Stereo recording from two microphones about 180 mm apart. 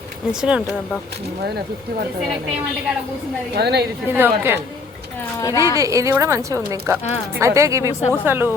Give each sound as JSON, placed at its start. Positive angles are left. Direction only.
{"t": 0.4, "sound": "speech", "side_deg": -5}
{"t": 3.5, "sound": "a woman's voice", "side_deg": -65}
{"t": 4.1, "sound": "a woman's voice", "side_deg": -10}
{"t": 5.4, "sound": "a woman's voice", "side_deg": 20}
{"t": 5.7, "sound": "a woman's voice", "side_deg": -15}